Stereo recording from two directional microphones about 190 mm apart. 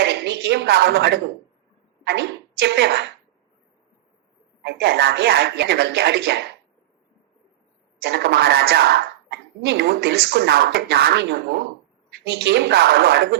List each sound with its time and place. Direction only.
0.0 s a sound: 60° right (ahead or behind)
2.0 s a woman's voice: 60° right (ahead or behind)
4.6 s a woman's voice: 60° right (ahead or behind)
8.0 s a woman's voice: 60° right (ahead or behind)
12.5 s a woman's voice: 65° right (ahead or behind)